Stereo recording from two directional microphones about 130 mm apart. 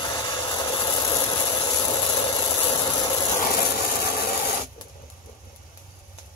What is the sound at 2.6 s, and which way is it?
Hiss, 30° left (ahead or behind).